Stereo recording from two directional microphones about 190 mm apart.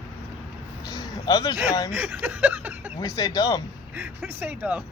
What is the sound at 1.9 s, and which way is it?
Speech, 10° right (ahead or behind).